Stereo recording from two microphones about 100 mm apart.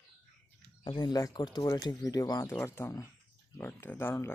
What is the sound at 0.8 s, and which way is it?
Speech, 45° left (ahead or behind).